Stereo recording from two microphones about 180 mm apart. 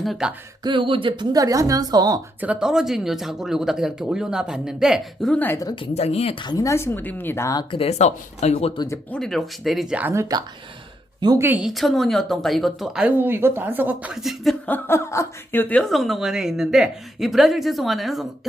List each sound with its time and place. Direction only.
0.0 s speech: centre (ahead or behind)
0.6 s speech: 25° right (ahead or behind)
2.4 s speech: 5° right (ahead or behind); by 7.6 s 15° left (ahead or behind)
7.7 s speech: 35° left (ahead or behind)
9.0 s speech: 5° left (ahead or behind)
14.7 s speech: 15° left (ahead or behind)